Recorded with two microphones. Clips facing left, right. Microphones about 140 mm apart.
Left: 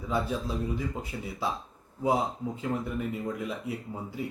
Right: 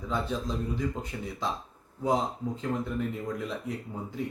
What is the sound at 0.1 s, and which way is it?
Speech, 5° left (ahead or behind).